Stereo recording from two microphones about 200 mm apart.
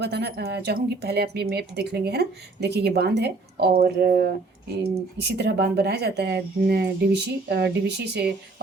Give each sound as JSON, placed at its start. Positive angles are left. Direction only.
{"t": 0.0, "sound": "speech", "side_deg": -55}
{"t": 4.8, "sound": "speech", "side_deg": -55}